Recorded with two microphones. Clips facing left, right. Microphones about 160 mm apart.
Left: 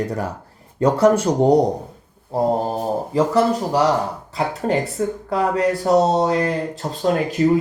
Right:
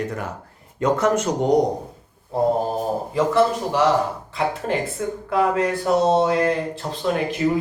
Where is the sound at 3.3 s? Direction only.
40° left (ahead or behind).